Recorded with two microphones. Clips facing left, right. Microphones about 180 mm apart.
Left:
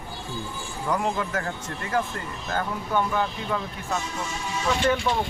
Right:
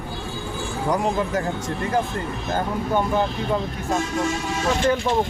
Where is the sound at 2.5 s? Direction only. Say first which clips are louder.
Right 3 dB; 20° right (ahead or behind).